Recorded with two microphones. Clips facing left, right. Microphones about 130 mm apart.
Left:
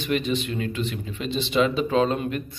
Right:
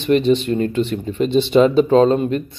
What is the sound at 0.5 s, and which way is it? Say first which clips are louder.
Speech: right 9 dB; 40° right (ahead or behind).